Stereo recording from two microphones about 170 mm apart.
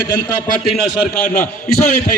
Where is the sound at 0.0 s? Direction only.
60° left (ahead or behind).